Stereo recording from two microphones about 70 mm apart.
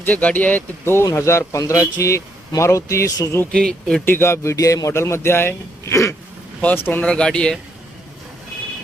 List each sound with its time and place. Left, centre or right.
0.0 s speech: left
1.0 s speech: left
3.5 s speech: centre
4.0 s speech: left
4.5 s speech: left
5.9 s a sound: left
6.7 s speech: left
7.0 s speech: centre